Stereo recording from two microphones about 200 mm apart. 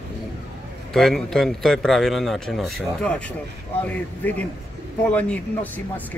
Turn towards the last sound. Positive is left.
turn(degrees=5)  # may be behind; listen again after turning